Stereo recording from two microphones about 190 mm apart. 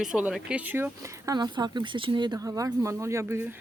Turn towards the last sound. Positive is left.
turn(degrees=-15)  # may be behind; listen again after turning